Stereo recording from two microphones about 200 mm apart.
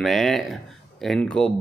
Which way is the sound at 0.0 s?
Centre (ahead or behind).